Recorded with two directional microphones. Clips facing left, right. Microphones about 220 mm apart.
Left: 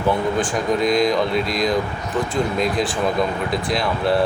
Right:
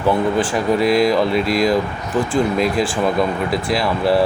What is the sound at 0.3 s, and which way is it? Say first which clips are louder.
Speech: right 3 dB; 5° right (ahead or behind).